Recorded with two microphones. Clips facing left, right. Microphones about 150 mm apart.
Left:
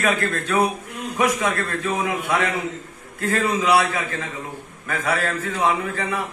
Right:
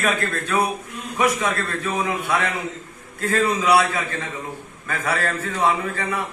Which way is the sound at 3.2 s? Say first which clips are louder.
Right 1 dB; 15° left (ahead or behind).